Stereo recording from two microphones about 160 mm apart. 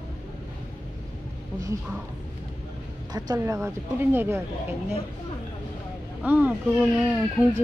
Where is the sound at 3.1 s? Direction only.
20° right (ahead or behind).